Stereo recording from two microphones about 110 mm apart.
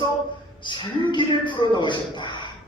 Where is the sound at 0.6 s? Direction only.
45° left (ahead or behind).